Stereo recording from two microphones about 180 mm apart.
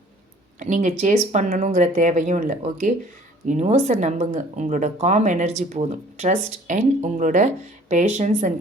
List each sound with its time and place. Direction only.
0.6 s speech: 45° right (ahead or behind)